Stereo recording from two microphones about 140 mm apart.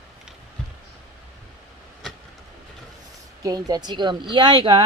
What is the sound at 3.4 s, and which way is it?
Speech, 30° right (ahead or behind).